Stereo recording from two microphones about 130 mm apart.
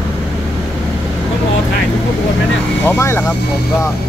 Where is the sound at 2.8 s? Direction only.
20° left (ahead or behind).